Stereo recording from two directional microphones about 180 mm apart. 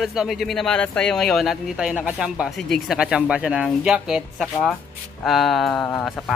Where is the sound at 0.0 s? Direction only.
Centre (ahead or behind).